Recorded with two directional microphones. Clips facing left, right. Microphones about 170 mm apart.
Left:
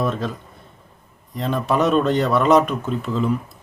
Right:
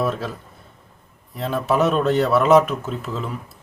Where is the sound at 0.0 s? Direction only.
5° right (ahead or behind).